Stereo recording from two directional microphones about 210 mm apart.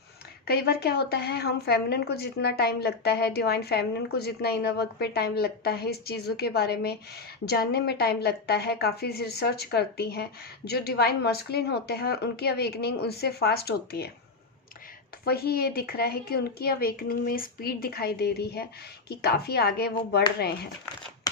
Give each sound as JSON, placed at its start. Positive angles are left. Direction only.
{"t": 0.4, "sound": "a woman's voice", "side_deg": 50}
{"t": 15.2, "sound": "a woman's voice", "side_deg": 50}